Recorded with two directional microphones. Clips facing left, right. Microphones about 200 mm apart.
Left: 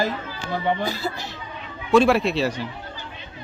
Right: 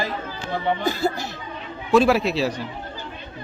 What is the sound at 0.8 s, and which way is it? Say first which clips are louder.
Speech: right 4 dB; 50° right (ahead or behind).